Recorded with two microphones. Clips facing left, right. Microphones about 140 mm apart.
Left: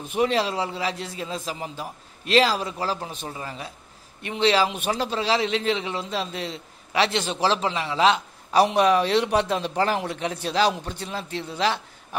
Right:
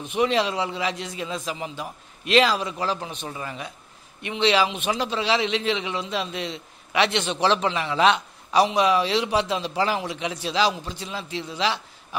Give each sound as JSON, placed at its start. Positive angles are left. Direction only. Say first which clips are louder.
{"t": 0.1, "sound": "a man's voice", "louder": "even", "side_deg": 40}
{"t": 8.6, "sound": "a man's voice", "louder": "left 1 dB", "side_deg": 50}